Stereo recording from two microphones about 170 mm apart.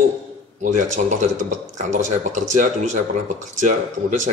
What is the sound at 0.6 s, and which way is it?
Speech, 45° right (ahead or behind).